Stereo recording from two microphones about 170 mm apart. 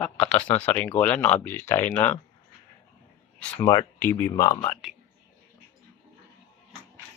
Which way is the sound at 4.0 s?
15° left (ahead or behind).